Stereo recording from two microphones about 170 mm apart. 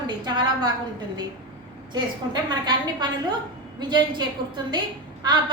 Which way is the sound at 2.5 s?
25° right (ahead or behind).